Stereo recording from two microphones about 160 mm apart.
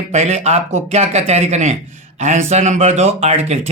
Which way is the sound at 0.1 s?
40° right (ahead or behind).